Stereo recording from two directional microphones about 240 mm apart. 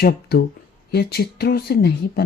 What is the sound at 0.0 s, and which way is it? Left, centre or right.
Speech, left.